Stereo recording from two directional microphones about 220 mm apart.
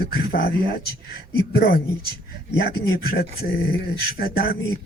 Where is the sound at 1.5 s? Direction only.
45° left (ahead or behind).